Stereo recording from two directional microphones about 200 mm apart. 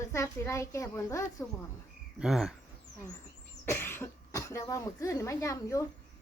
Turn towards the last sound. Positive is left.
turn(degrees=15)  # may be behind; listen again after turning